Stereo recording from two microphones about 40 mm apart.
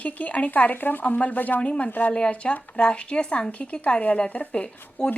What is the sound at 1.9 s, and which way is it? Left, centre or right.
Speech, left.